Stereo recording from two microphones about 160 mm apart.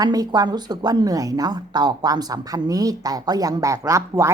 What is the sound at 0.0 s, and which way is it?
Speech, 25° right (ahead or behind).